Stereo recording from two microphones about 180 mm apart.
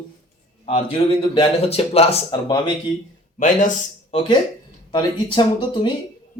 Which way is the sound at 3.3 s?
45° left (ahead or behind).